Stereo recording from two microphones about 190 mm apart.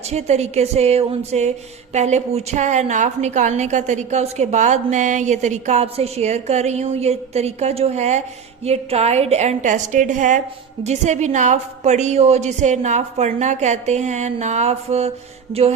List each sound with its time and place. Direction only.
0.1 s speech: 35° right (ahead or behind)